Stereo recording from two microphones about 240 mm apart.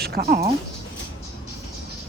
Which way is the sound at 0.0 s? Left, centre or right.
Right.